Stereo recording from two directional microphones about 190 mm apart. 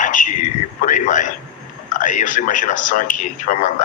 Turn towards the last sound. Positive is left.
turn(degrees=45)  # may be behind; listen again after turning